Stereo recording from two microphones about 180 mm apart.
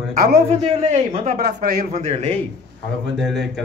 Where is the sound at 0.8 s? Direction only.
40° right (ahead or behind).